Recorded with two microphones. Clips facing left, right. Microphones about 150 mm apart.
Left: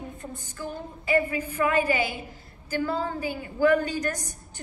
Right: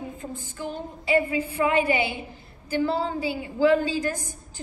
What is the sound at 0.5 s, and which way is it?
A woman's voice, 20° right (ahead or behind).